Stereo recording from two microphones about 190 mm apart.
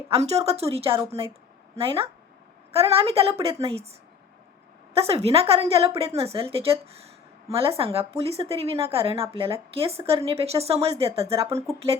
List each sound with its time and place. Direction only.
0.1 s speech: 35° right (ahead or behind)
4.9 s speech: 30° right (ahead or behind)
11.4 s speech: 15° right (ahead or behind)